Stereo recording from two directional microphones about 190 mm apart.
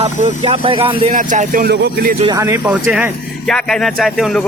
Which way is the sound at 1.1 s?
40° right (ahead or behind).